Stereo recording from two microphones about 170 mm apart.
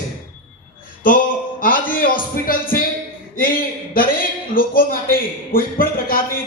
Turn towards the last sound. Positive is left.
turn(degrees=55)  # may be behind; listen again after turning